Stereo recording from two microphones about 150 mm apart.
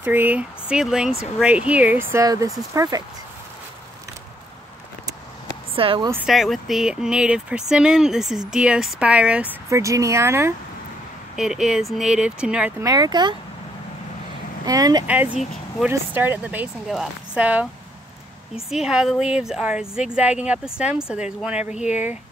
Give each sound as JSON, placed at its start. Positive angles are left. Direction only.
{"t": 0.0, "sound": "speech", "side_deg": -10}
{"t": 5.8, "sound": "speech", "side_deg": -40}
{"t": 6.2, "sound": "speech", "side_deg": 0}
{"t": 9.7, "sound": "speech", "side_deg": -20}
{"t": 11.3, "sound": "speech", "side_deg": -5}
{"t": 12.8, "sound": "speech", "side_deg": -25}
{"t": 14.6, "sound": "speech", "side_deg": -25}
{"t": 15.0, "sound": "speech", "side_deg": -10}
{"t": 18.7, "sound": "speech", "side_deg": -5}